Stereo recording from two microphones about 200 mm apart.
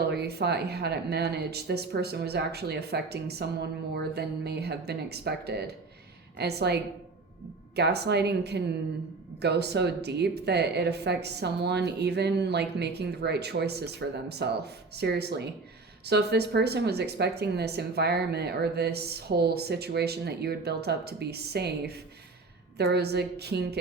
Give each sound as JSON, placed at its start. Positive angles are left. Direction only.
{"t": 0.1, "sound": "speech", "side_deg": -55}
{"t": 7.8, "sound": "speech", "side_deg": -55}